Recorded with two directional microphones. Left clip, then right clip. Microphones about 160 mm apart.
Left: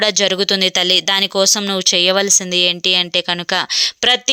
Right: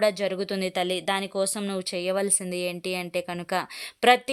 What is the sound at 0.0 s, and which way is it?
Speech, 25° left (ahead or behind).